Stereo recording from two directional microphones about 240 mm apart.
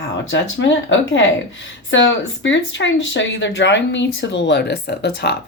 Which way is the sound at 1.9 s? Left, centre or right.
Left.